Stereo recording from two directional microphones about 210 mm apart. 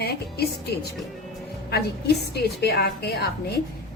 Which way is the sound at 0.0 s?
50° left (ahead or behind).